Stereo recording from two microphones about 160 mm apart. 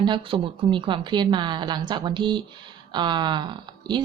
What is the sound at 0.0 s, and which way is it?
A woman's voice, 30° right (ahead or behind).